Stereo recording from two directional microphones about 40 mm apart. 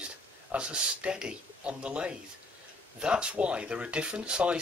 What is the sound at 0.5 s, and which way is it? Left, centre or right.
Speech, right.